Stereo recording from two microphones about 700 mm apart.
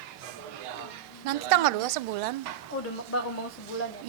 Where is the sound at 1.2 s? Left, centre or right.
Right.